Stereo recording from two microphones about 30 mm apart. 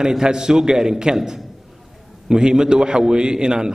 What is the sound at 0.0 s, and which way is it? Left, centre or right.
A man's voice, right.